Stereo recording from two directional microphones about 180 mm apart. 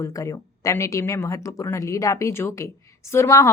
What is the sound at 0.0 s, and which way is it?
A woman's voice, 20° left (ahead or behind).